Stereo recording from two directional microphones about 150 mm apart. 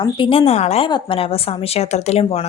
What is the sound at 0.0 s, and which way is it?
A woman's voice, 35° left (ahead or behind).